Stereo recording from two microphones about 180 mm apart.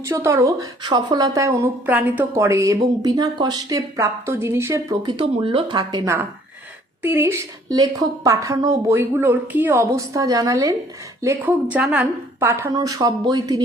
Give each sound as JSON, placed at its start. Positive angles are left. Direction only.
{"t": 0.0, "sound": "a woman's voice", "side_deg": -15}